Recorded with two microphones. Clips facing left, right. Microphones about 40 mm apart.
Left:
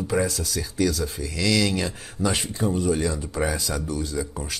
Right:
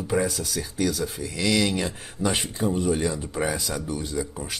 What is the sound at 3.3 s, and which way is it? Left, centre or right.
Speech, centre.